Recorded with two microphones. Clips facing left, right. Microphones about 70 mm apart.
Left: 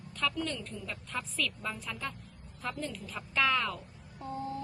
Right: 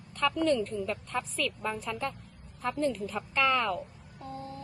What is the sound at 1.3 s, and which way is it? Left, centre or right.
A woman's voice, centre.